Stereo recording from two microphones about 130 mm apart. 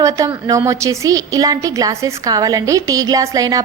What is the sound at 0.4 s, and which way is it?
A woman's voice, 25° right (ahead or behind).